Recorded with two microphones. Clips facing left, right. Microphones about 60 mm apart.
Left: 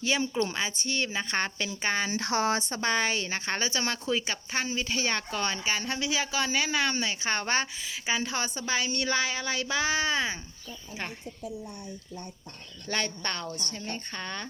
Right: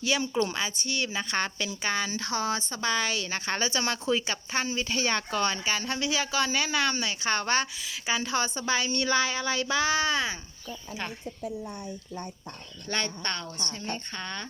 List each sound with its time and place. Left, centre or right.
0.3 s a woman's voice: left
2.0 s speech: left
2.8 s a woman's voice: left
3.2 s a woman's voice: centre
12.9 s a woman's voice: centre